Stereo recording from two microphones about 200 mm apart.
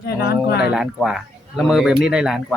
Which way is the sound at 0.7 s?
5° right (ahead or behind).